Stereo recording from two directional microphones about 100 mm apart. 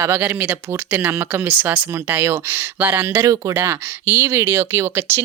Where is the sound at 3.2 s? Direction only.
35° right (ahead or behind).